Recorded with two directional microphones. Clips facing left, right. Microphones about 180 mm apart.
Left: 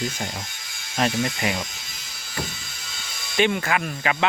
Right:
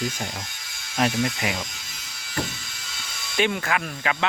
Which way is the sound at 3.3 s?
Centre (ahead or behind).